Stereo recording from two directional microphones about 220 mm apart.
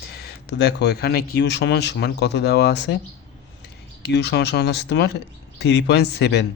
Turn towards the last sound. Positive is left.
turn(degrees=50)  # may be behind; listen again after turning